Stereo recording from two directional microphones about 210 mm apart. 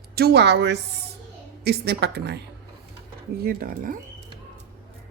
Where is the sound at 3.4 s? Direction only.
45° right (ahead or behind).